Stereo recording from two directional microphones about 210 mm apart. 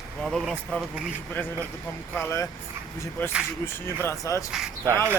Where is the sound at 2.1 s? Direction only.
10° left (ahead or behind).